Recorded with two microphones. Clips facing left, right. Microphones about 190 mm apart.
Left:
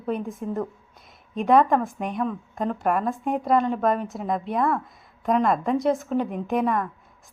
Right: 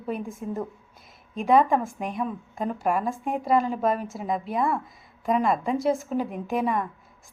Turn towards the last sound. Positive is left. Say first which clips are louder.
# left 2 dB
turn(degrees=0)  # may be behind; listen again after turning